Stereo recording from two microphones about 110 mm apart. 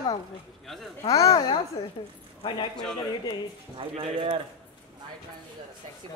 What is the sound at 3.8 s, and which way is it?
Speech, 60° right (ahead or behind).